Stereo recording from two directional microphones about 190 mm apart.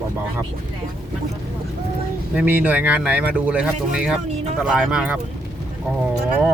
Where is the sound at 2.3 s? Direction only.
10° right (ahead or behind).